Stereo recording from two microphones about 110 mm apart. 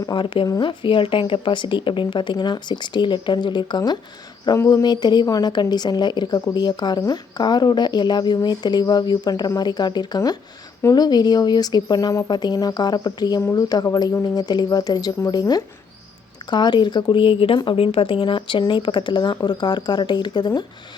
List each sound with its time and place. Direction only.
0.0 s speech: 45° left (ahead or behind)
4.4 s speech: 30° left (ahead or behind)